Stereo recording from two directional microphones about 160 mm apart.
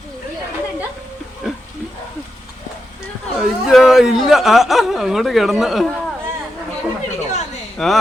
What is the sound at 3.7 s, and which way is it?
Speech, centre (ahead or behind).